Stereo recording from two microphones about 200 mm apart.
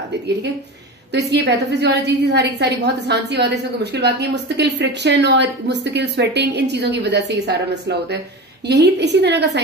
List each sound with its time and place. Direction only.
1.1 s a woman's voice: 60° right (ahead or behind)